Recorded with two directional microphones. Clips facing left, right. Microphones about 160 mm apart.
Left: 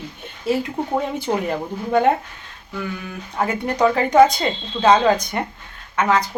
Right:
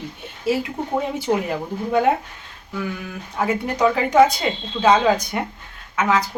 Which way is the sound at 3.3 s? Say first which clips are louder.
Left 1 dB; 5° right (ahead or behind).